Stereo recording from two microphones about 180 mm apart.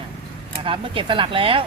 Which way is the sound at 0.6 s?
30° right (ahead or behind).